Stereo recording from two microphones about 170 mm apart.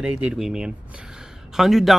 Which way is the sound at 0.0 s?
5° right (ahead or behind).